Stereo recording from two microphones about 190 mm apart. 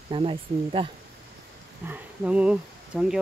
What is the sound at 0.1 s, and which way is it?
Speech, 25° right (ahead or behind).